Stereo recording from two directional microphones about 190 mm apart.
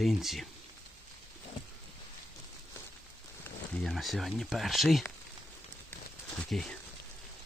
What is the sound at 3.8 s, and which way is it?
Speech, centre (ahead or behind).